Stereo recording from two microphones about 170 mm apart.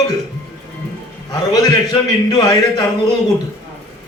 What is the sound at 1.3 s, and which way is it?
A man's voice, 20° left (ahead or behind).